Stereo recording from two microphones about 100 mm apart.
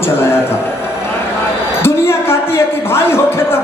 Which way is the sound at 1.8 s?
25° left (ahead or behind).